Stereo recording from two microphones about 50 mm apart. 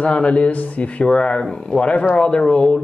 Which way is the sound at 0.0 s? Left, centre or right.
Left.